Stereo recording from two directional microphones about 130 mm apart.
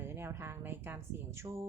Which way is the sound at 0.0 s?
20° right (ahead or behind).